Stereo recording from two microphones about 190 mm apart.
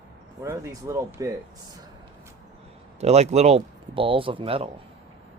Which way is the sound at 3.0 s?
35° right (ahead or behind).